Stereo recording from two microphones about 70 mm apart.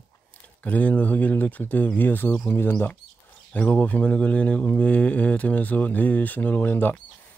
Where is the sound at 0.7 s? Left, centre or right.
Left.